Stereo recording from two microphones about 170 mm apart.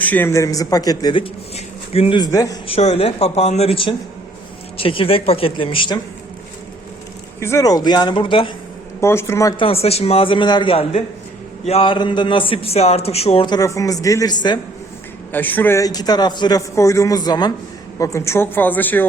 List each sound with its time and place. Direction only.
0.0 s a man's voice: 10° left (ahead or behind)
2.6 s a man's voice: 35° left (ahead or behind)
7.4 s a man's voice: 20° left (ahead or behind)
9.0 s a woman's voice: 15° left (ahead or behind)
9.6 s a man's voice: 35° left (ahead or behind)
15.3 s a man's voice: 10° left (ahead or behind)